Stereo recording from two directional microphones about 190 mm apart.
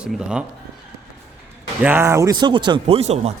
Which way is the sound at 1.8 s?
10° right (ahead or behind).